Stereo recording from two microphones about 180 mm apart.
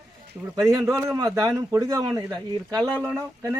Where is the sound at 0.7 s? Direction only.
15° right (ahead or behind).